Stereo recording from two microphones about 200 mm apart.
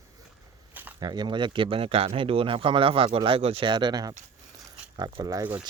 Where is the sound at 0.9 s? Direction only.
20° right (ahead or behind).